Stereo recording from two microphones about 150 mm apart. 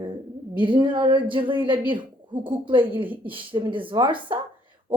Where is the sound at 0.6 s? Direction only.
30° right (ahead or behind).